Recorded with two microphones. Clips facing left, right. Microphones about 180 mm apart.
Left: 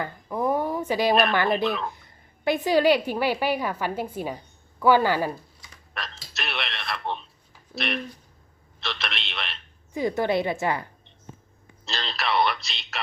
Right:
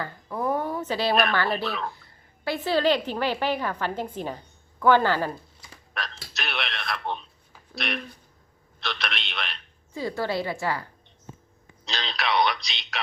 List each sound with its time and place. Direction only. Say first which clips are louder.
0.0 s a sound: left 2 dB; 15° left (ahead or behind)
1.3 s a woman's voice: left 3 dB; 20° left (ahead or behind)
6.0 s speech: right 1 dB; centre (ahead or behind)
9.9 s a woman's voice: left 4 dB; 20° left (ahead or behind)
11.9 s speech: even; centre (ahead or behind)